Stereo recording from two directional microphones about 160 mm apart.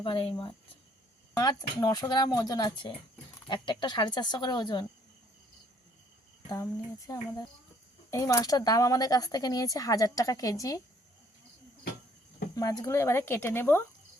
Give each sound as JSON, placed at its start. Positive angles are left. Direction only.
{"t": 0.0, "sound": "speech", "side_deg": 35}
{"t": 7.1, "sound": "speech", "side_deg": 25}
{"t": 12.5, "sound": "speech", "side_deg": 20}